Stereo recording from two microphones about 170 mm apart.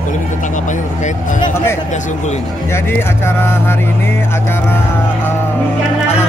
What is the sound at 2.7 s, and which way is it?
Speech, 15° left (ahead or behind).